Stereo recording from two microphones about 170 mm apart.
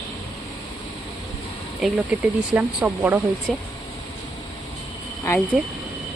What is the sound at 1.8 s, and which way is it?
A woman's voice, centre (ahead or behind).